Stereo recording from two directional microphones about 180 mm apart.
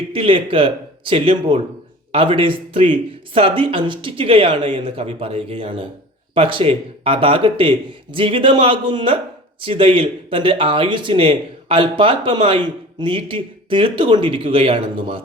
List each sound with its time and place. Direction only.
0.1 s speech: 30° right (ahead or behind)